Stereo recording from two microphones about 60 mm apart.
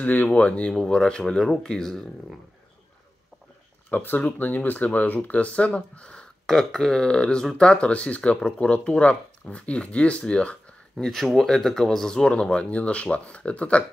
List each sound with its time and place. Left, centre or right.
0.0 s speech: left; by 2.0 s centre
3.9 s speech: left
6.4 s speech: centre
11.1 s speech: centre; by 13.8 s left